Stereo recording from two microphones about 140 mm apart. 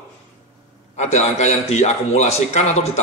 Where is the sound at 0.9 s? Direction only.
55° left (ahead or behind).